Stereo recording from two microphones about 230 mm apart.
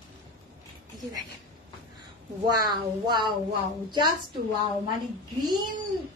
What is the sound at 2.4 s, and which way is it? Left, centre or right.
Speech, centre.